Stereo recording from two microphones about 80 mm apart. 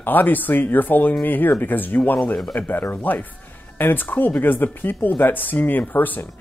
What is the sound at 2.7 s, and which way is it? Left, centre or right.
Speech, left.